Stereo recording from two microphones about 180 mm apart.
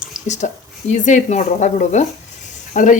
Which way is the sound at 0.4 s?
40° left (ahead or behind).